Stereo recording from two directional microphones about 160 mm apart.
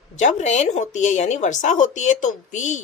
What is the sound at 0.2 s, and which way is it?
A woman's voice, 50° left (ahead or behind).